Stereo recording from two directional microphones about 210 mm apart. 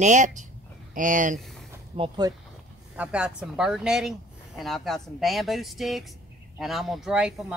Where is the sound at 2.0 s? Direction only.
20° right (ahead or behind).